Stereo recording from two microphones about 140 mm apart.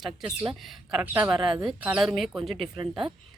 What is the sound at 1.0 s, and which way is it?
A woman's voice, 10° right (ahead or behind).